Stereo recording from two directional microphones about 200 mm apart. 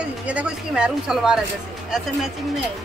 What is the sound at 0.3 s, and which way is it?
Speech, 5° right (ahead or behind).